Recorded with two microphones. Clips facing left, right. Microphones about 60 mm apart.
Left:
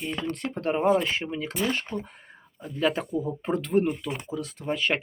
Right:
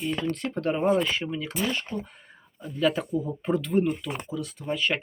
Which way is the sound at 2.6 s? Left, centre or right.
Left.